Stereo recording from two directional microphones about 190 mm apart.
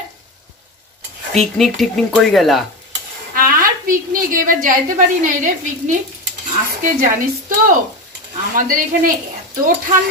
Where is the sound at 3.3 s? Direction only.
45° right (ahead or behind).